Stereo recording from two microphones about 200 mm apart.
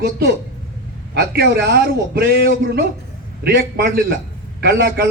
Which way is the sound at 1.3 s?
55° right (ahead or behind).